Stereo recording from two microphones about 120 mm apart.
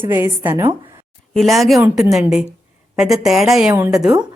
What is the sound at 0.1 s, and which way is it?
Speech, 20° right (ahead or behind).